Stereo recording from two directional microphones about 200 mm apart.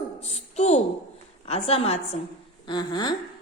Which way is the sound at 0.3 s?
35° left (ahead or behind).